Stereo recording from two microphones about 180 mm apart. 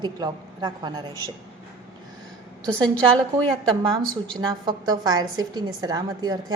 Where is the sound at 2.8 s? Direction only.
5° left (ahead or behind).